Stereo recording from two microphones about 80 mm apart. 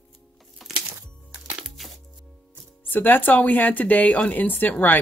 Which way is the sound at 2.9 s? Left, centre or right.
Left.